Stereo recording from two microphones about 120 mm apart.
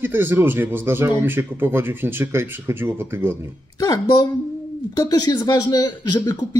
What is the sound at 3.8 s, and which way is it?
Speech, 30° left (ahead or behind).